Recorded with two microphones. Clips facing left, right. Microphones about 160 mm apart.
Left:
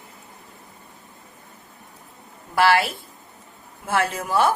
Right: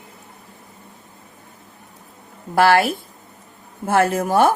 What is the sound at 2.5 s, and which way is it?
Speech, 45° right (ahead or behind).